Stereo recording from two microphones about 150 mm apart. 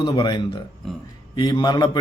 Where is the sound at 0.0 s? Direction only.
30° left (ahead or behind).